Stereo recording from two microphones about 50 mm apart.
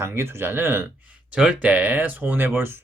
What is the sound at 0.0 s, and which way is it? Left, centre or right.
Speech, right.